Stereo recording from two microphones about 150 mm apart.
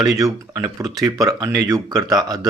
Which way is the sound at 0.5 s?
25° right (ahead or behind).